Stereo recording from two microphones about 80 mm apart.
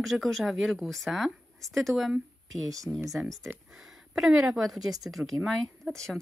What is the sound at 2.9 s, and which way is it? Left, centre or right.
Speech, centre.